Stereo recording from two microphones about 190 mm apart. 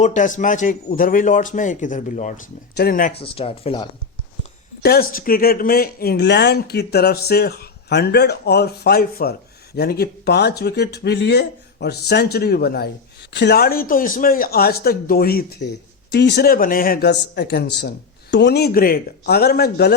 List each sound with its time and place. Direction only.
0.0 s a man's voice: 40° left (ahead or behind)
3.2 s speech: 30° left (ahead or behind)
4.8 s speech: 55° left (ahead or behind)